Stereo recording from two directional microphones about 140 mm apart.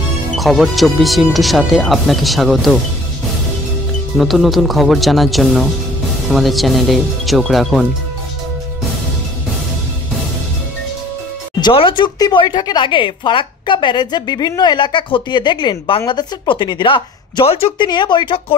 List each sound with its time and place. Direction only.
0.4 s speech: centre (ahead or behind)
4.2 s speech: centre (ahead or behind)
11.6 s speech: 35° left (ahead or behind)